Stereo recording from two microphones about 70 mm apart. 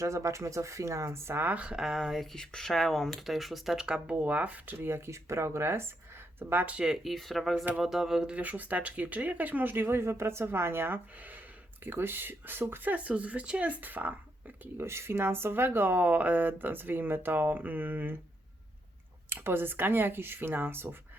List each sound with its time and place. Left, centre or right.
0.0 s speech: right; by 1.8 s centre
1.8 s speech: centre; by 6.7 s right
6.7 s speech: centre
8.4 s speech: right
14.8 s speech: right
19.3 s speech: right